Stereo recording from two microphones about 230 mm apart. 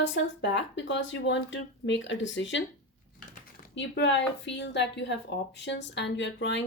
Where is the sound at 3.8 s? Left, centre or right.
Left.